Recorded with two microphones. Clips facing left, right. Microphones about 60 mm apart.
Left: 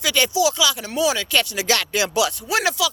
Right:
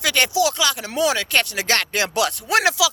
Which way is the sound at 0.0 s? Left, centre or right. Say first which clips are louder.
Even; right.